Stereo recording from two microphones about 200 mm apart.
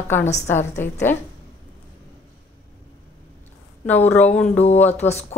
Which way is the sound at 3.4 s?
10° left (ahead or behind).